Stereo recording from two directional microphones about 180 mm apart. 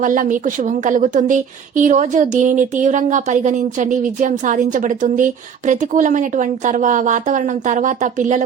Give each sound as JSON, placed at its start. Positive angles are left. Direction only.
{"t": 0.0, "sound": "a woman's voice", "side_deg": -45}